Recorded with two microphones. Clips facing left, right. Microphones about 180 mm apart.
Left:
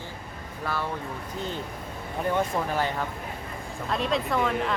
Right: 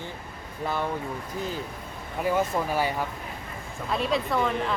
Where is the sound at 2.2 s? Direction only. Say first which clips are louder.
Right 1 dB; 10° right (ahead or behind).